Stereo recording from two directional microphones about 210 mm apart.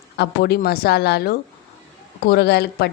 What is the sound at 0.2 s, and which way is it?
A woman's voice, 50° left (ahead or behind).